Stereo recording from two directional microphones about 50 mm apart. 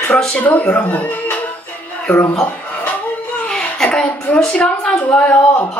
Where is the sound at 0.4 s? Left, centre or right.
Left.